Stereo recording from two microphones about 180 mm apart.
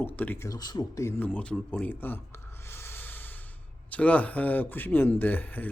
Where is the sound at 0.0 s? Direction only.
10° left (ahead or behind).